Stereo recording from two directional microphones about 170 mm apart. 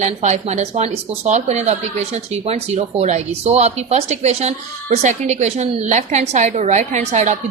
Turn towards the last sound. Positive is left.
turn(degrees=-45)  # may be behind; listen again after turning